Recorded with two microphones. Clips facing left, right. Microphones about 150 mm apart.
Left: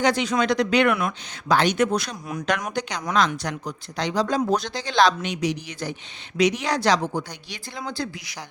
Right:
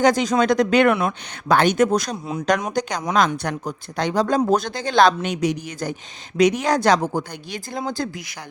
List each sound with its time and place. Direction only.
0.0 s speech: 45° right (ahead or behind)